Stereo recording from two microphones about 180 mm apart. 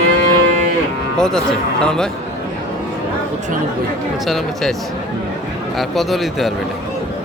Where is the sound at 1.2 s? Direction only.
5° left (ahead or behind).